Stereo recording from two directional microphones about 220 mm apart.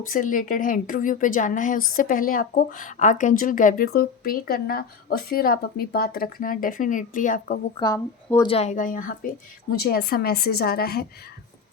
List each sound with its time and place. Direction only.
0.0 s a woman's voice: 35° left (ahead or behind)
7.8 s speech: 15° left (ahead or behind)
8.4 s a woman's voice: 30° left (ahead or behind); by 11.0 s 45° left (ahead or behind)